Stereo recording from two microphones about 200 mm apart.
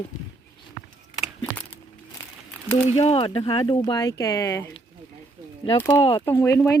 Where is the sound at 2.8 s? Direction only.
30° left (ahead or behind).